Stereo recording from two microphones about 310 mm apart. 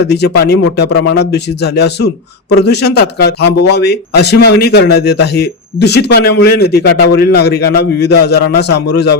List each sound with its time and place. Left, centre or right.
0.1 s speech: left